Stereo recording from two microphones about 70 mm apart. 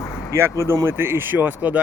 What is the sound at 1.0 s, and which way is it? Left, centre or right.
Speech, right.